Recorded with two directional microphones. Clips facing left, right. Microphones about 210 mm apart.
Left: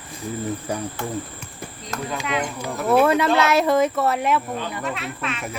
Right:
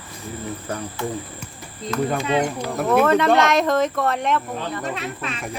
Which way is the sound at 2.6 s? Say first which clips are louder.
Left 4 dB; 5° left (ahead or behind).